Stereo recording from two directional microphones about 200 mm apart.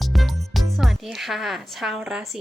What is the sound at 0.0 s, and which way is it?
Speech, centre (ahead or behind).